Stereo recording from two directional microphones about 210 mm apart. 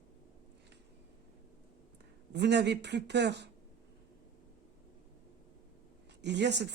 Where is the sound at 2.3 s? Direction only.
55° right (ahead or behind).